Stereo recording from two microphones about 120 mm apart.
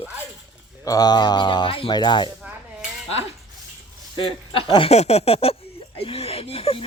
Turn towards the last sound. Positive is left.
turn(degrees=55)  # may be behind; listen again after turning